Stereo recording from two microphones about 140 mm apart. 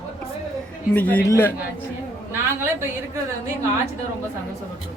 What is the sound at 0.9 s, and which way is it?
Speech, 10° left (ahead or behind).